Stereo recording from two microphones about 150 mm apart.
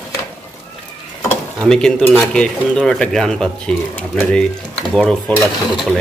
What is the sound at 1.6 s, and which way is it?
Speech, 5° left (ahead or behind).